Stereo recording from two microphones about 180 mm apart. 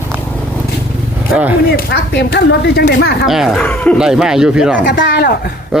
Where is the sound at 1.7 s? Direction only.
70° left (ahead or behind).